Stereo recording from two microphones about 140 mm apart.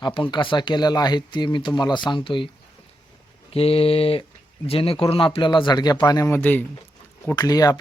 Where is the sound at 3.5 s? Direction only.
45° left (ahead or behind).